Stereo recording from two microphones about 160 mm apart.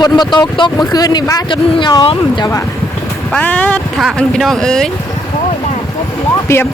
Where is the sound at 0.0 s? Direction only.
25° left (ahead or behind).